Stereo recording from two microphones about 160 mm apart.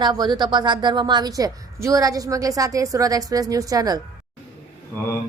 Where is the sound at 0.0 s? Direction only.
25° right (ahead or behind).